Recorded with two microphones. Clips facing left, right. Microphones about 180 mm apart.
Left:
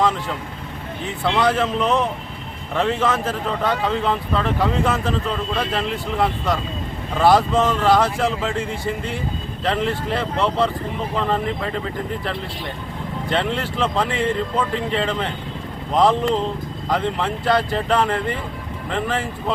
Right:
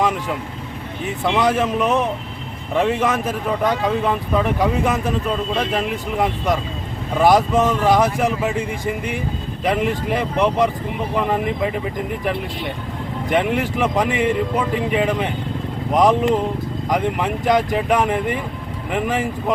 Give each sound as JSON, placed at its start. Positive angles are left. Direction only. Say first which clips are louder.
{"t": 0.0, "sound": "vehicle", "louder": "even", "side_deg": -15}
{"t": 1.2, "sound": "speech", "louder": "right 1 dB", "side_deg": -15}
{"t": 13.2, "sound": "speech", "louder": "right 4 dB", "side_deg": -15}